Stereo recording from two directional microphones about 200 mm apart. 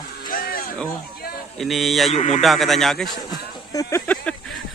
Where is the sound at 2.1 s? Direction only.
35° left (ahead or behind).